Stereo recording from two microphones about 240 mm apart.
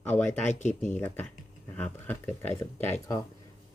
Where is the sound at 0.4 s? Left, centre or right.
Left.